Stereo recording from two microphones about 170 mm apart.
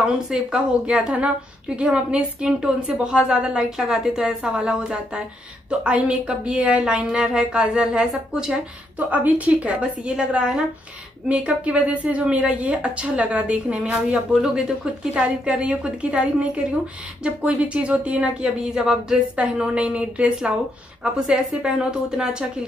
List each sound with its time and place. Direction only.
0.0 s a woman's voice: 5° right (ahead or behind)
17.2 s a woman's voice: 5° right (ahead or behind)